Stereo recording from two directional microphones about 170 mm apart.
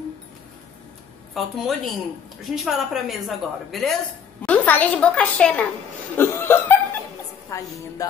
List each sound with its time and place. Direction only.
1.3 s a woman's voice: centre (ahead or behind)
6.1 s chuckle: 15° left (ahead or behind)
8.0 s music: 20° left (ahead or behind)